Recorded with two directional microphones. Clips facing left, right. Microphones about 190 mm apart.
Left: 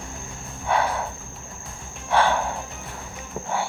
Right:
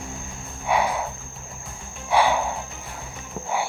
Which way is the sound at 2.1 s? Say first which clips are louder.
Right 1 dB; 10° right (ahead or behind).